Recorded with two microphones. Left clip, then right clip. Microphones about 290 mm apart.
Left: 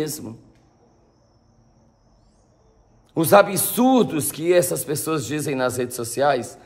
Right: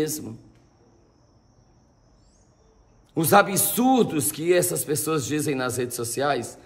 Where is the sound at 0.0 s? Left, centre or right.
Centre.